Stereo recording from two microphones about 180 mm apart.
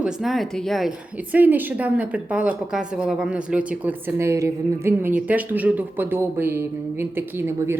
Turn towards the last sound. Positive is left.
turn(degrees=-15)  # may be behind; listen again after turning